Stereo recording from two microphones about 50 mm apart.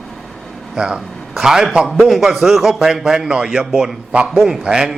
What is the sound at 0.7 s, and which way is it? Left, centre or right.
Speech, centre.